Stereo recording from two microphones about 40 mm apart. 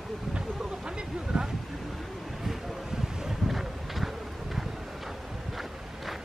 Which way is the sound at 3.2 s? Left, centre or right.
Centre.